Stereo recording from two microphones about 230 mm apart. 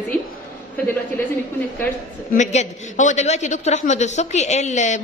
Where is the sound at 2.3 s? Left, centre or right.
Left.